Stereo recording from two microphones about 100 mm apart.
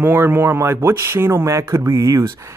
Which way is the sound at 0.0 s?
25° right (ahead or behind).